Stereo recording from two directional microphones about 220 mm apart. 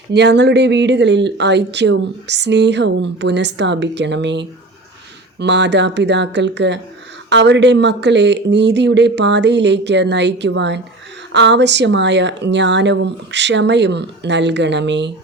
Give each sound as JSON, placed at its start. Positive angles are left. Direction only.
{"t": 0.1, "sound": "speech", "side_deg": -50}